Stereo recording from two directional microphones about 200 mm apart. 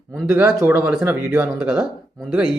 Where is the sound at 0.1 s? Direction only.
Centre (ahead or behind).